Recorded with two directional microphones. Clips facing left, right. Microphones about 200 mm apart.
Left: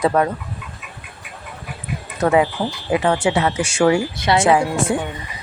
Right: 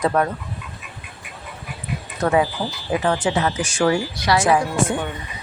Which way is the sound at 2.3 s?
20° left (ahead or behind).